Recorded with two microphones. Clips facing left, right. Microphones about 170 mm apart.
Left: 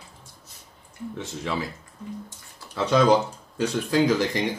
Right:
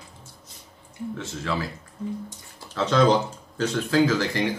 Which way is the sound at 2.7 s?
10° left (ahead or behind).